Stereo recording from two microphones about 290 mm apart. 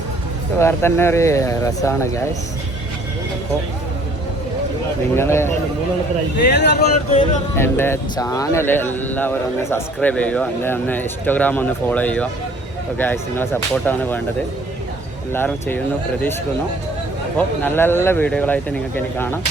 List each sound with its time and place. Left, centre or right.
0.6 s speech: centre
5.1 s speech: centre
6.5 s speech: left
7.1 s music: centre
7.5 s speech: centre
15.3 s speech: centre
17.3 s speech: centre